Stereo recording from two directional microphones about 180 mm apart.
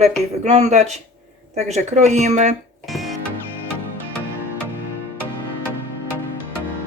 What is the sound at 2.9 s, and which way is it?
Music, centre (ahead or behind).